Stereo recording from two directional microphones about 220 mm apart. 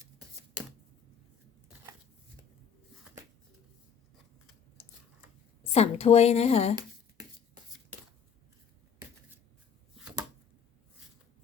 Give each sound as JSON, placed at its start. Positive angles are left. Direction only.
{"t": 5.7, "sound": "a woman's voice", "side_deg": 30}